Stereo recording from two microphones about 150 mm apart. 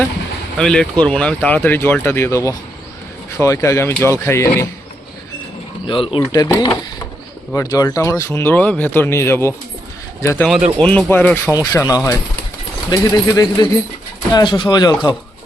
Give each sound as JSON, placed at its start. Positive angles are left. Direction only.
{"t": 0.5, "sound": "speech", "side_deg": 5}
{"t": 5.9, "sound": "speech", "side_deg": 35}
{"t": 7.5, "sound": "speech", "side_deg": 20}
{"t": 10.8, "sound": "speech", "side_deg": 10}
{"t": 11.5, "sound": "speech", "side_deg": 20}